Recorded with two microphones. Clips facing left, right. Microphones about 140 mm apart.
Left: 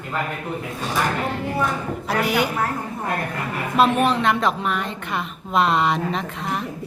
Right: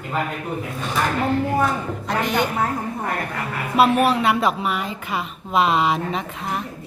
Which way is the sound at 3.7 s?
5° right (ahead or behind).